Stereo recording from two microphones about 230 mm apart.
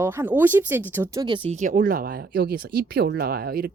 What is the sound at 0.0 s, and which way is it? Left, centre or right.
A woman's voice, centre.